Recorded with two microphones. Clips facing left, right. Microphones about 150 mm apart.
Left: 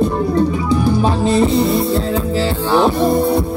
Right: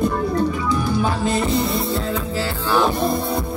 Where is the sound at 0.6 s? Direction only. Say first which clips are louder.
Left 5 dB; 30° left (ahead or behind).